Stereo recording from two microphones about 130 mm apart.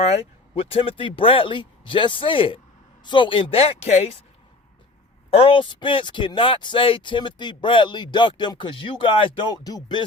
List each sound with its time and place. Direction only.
0.0 s speech: 50° left (ahead or behind)
5.3 s speech: 45° left (ahead or behind)